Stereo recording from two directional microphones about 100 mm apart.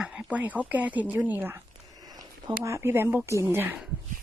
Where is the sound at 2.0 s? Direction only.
40° right (ahead or behind).